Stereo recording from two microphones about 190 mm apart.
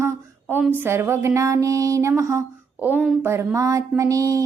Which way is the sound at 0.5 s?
10° right (ahead or behind).